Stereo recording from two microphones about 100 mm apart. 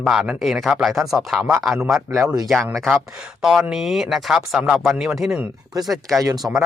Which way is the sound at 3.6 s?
5° right (ahead or behind).